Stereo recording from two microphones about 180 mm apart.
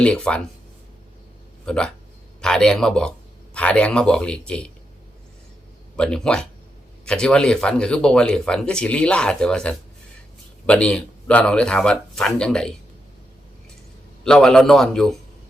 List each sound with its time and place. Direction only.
0.0 s speech: 5° left (ahead or behind)
1.6 s speech: 5° left (ahead or behind)
6.0 s speech: 5° left (ahead or behind)
14.3 s speech: 5° left (ahead or behind)